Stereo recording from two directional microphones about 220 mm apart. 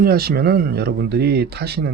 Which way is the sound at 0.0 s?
45° right (ahead or behind).